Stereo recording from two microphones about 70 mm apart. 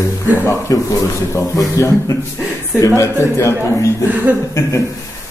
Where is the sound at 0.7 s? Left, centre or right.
Left.